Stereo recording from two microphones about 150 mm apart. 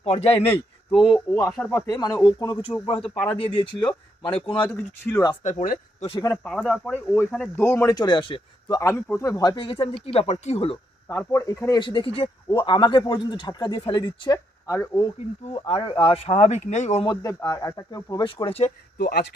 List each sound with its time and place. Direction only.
0.0 s speech: 45° left (ahead or behind)
0.9 s speech: centre (ahead or behind)
1.1 s speech: 20° left (ahead or behind)
4.7 s speech: 15° left (ahead or behind)
5.4 s speech: 55° left (ahead or behind)
6.0 s speech: 40° left (ahead or behind)
6.3 s speech: centre (ahead or behind); by 8.4 s 30° left (ahead or behind)
8.6 s speech: 20° left (ahead or behind); by 10.8 s 40° left (ahead or behind)
11.1 s speech: 20° left (ahead or behind)
11.7 s speech: 30° left (ahead or behind)
14.3 s speech: 20° left (ahead or behind)
15.4 s speech: 40° left (ahead or behind)
17.1 s speech: 30° left (ahead or behind)
18.9 s speech: 90° left